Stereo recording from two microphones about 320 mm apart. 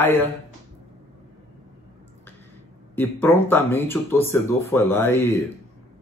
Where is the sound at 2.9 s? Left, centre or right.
Centre.